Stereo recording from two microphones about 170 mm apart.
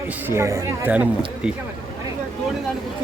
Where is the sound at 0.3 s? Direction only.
15° right (ahead or behind).